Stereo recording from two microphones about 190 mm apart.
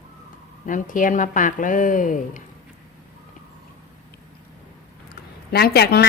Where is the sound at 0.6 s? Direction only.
45° left (ahead or behind).